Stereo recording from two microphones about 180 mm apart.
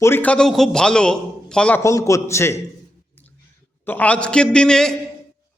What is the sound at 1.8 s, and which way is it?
Speech, 15° left (ahead or behind).